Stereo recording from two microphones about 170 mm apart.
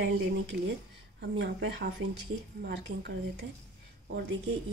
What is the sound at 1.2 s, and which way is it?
Speech, 85° right.